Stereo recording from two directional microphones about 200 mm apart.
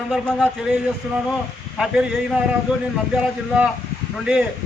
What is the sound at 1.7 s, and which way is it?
Speech, 5° right (ahead or behind).